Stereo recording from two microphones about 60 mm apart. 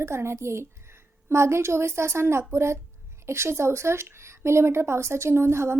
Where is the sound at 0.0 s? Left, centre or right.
Right.